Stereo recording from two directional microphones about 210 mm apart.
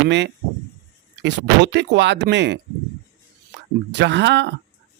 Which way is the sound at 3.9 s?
55° right (ahead or behind).